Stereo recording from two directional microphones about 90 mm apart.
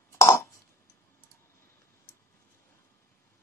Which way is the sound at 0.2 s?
30° left (ahead or behind).